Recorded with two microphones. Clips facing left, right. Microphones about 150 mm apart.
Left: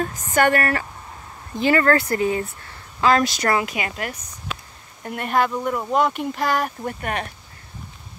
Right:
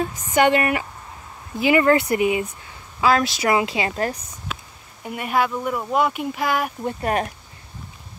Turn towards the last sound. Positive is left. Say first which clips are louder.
# right 5 dB
turn(degrees=-35)  # may be behind; listen again after turning